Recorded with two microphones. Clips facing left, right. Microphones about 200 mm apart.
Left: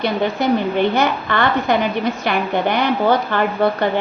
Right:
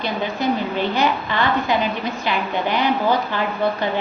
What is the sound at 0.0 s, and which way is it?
A woman's voice, 60° left (ahead or behind).